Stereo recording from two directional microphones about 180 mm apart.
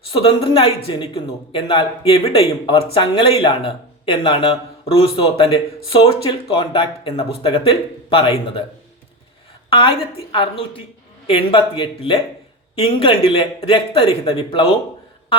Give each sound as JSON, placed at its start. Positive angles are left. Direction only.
{"t": 0.1, "sound": "speech", "side_deg": 30}
{"t": 9.6, "sound": "a woman's voice", "side_deg": 30}
{"t": 11.3, "sound": "speech", "side_deg": 30}